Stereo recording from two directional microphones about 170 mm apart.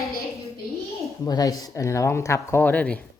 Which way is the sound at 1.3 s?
20° left (ahead or behind).